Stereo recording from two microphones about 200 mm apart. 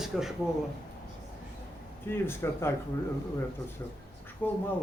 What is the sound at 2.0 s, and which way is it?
Speech, 10° left (ahead or behind).